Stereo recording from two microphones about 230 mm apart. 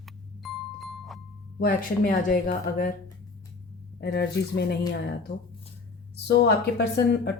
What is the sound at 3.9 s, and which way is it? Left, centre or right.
Speech, left.